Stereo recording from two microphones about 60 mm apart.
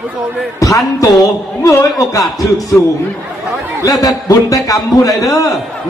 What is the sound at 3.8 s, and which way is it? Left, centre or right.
A man's voice, left.